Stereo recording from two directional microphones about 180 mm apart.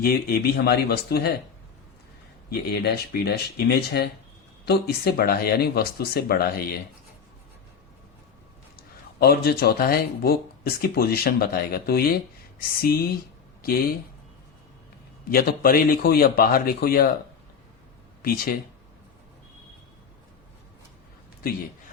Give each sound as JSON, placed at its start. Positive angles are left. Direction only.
{"t": 0.0, "sound": "speech", "side_deg": 55}
{"t": 2.5, "sound": "speech", "side_deg": 60}
{"t": 9.1, "sound": "speech", "side_deg": 60}
{"t": 15.3, "sound": "speech", "side_deg": 55}
{"t": 18.2, "sound": "speech", "side_deg": 55}